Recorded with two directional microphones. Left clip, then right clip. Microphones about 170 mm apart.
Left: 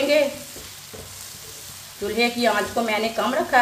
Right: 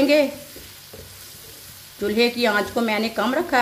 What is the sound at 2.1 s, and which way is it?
Speech, 60° right (ahead or behind).